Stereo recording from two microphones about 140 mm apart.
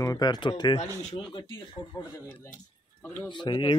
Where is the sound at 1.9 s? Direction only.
20° left (ahead or behind).